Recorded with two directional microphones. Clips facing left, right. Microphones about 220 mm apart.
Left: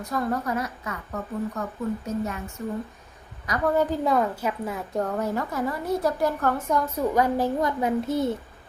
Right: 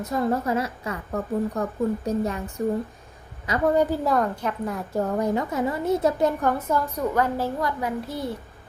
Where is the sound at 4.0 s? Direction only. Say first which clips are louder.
Even; centre (ahead or behind).